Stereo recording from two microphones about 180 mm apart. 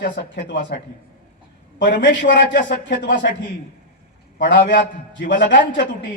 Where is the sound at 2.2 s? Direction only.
80° left.